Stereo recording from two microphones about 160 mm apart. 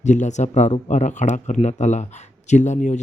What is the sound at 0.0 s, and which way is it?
Speech, 50° left (ahead or behind).